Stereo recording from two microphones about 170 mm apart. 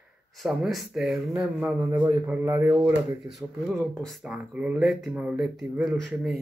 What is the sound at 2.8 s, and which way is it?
Speech, centre (ahead or behind).